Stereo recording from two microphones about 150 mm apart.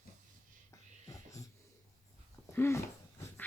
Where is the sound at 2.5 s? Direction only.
15° left (ahead or behind).